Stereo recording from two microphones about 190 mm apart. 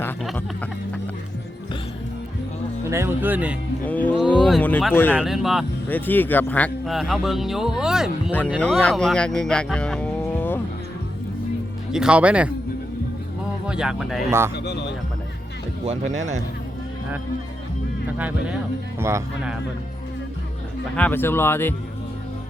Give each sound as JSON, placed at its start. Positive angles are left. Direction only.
{"t": 2.9, "sound": "speech", "side_deg": -15}
{"t": 3.8, "sound": "speech", "side_deg": 10}
{"t": 5.9, "sound": "speech", "side_deg": 10}
{"t": 11.9, "sound": "speech", "side_deg": -5}
{"t": 13.7, "sound": "speech", "side_deg": -5}
{"t": 14.3, "sound": "speech", "side_deg": -15}
{"t": 14.5, "sound": "speech", "side_deg": 60}
{"t": 15.9, "sound": "speech", "side_deg": -35}
{"t": 18.2, "sound": "speech", "side_deg": -10}
{"t": 20.9, "sound": "speech", "side_deg": 10}